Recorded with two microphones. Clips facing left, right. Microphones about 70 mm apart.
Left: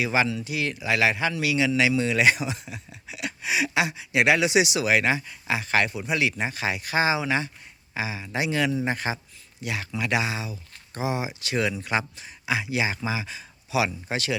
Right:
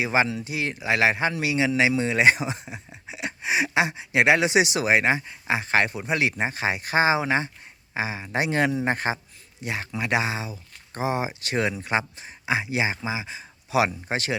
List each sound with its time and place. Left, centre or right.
0.0 s speech: right
13.0 s speech: centre
13.7 s speech: right